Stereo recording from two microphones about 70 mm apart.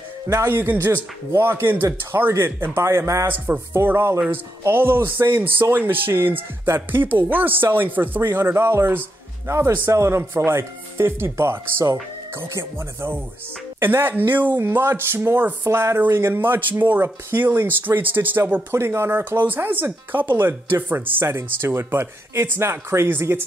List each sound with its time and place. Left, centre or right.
0.3 s speech: right
3.3 s speech: right